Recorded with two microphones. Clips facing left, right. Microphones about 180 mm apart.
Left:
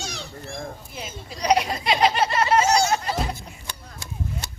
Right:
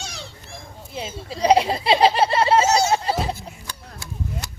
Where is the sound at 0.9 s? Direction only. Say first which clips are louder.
Right 5 dB; 30° right (ahead or behind).